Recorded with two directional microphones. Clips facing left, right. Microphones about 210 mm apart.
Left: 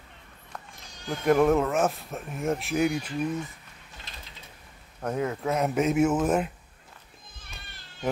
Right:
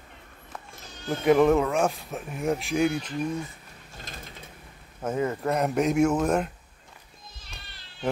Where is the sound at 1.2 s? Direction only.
Centre (ahead or behind).